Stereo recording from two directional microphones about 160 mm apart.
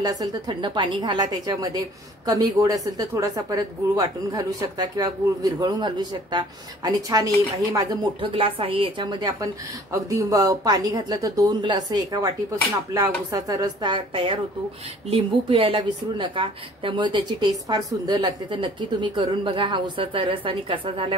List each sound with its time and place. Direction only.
0.0 s a woman's voice: 25° right (ahead or behind)